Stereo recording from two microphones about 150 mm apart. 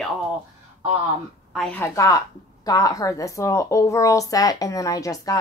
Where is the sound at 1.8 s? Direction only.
20° left (ahead or behind).